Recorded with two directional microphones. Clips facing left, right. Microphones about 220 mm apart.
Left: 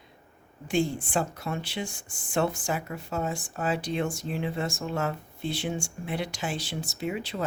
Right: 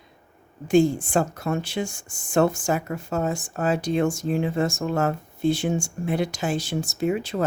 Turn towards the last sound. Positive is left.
turn(degrees=-45)  # may be behind; listen again after turning